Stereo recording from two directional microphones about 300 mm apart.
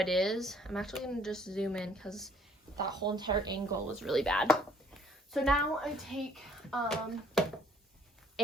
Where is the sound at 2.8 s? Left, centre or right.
Centre.